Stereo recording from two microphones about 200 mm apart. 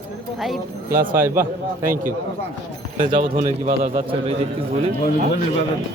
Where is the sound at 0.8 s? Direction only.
45° right (ahead or behind).